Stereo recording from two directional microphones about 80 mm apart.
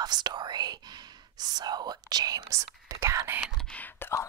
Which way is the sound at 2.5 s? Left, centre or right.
Right.